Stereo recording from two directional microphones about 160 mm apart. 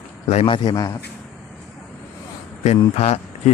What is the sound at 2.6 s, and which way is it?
Speech, 40° left (ahead or behind).